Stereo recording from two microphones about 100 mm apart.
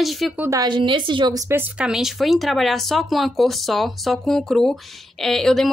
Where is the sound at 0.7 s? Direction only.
55° right (ahead or behind).